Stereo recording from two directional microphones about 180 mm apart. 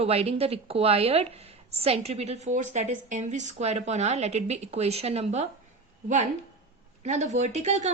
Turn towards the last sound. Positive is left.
turn(degrees=-40)  # may be behind; listen again after turning